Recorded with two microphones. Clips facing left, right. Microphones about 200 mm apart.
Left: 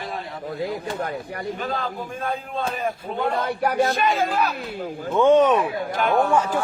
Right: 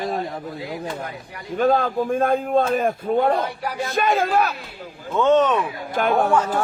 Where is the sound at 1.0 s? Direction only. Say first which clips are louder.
Left 5 dB; 50° left (ahead or behind).